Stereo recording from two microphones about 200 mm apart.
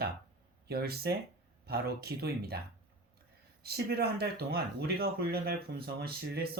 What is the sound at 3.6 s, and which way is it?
Speech, 50° right (ahead or behind).